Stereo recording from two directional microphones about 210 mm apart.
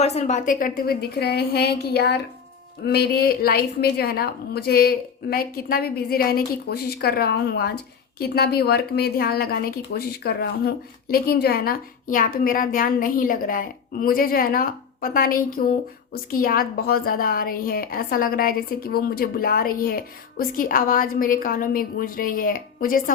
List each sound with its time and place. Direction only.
0.0 s a woman's voice: 30° left (ahead or behind)